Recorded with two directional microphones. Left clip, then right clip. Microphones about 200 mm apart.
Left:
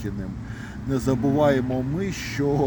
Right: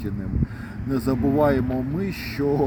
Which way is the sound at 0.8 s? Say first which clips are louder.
Even; 15° left (ahead or behind).